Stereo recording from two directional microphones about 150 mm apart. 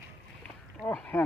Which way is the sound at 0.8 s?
10° left (ahead or behind).